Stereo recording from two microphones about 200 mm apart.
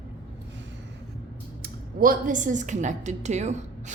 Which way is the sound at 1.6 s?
45° right (ahead or behind).